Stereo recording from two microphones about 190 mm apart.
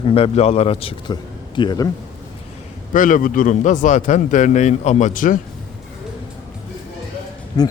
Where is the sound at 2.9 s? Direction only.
45° left (ahead or behind).